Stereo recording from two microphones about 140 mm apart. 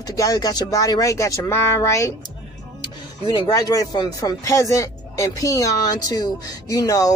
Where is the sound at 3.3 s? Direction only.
25° left (ahead or behind).